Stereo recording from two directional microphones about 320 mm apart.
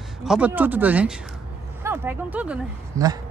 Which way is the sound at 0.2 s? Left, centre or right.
Centre.